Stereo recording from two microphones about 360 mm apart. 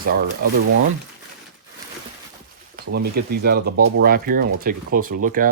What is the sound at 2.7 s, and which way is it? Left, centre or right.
Speech, right.